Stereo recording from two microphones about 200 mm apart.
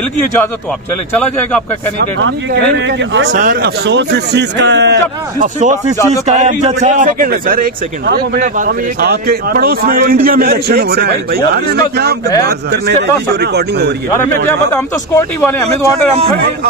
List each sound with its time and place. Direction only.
2.0 s a man's voice: 60° right (ahead or behind)
3.3 s a man's voice: 50° right (ahead or behind)
5.6 s a man's voice: 40° right (ahead or behind); by 13.9 s 55° right (ahead or behind)
14.5 s a man's voice: 10° left (ahead or behind)